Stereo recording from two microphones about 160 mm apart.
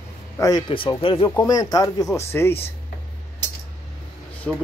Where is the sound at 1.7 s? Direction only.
20° left (ahead or behind).